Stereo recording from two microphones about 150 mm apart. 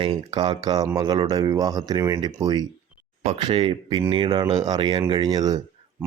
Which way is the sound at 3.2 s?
40° right (ahead or behind).